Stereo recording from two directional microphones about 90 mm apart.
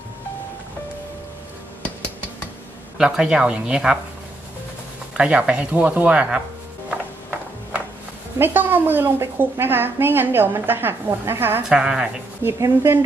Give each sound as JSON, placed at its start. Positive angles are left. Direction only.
{"t": 3.0, "sound": "speech", "side_deg": -10}
{"t": 5.1, "sound": "speech", "side_deg": -10}
{"t": 8.4, "sound": "a woman's voice", "side_deg": -25}
{"t": 11.7, "sound": "speech", "side_deg": -10}
{"t": 12.4, "sound": "a woman's voice", "side_deg": -30}